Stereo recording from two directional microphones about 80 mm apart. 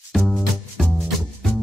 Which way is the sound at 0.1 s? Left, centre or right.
Centre.